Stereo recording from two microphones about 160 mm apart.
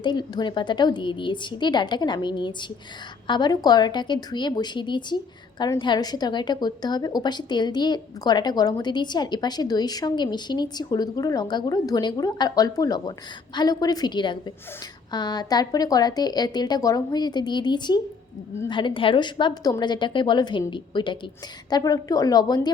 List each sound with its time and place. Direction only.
0.0 s a woman's voice: 25° left (ahead or behind)